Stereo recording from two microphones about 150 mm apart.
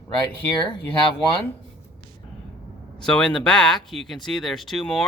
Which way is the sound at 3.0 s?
5° left (ahead or behind).